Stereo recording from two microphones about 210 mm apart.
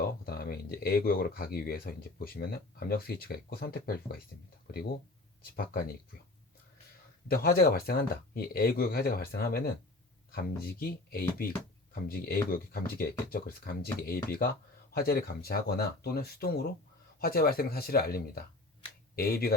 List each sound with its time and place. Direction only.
0.0 s speech: 45° left (ahead or behind)
7.3 s speech: 45° left (ahead or behind)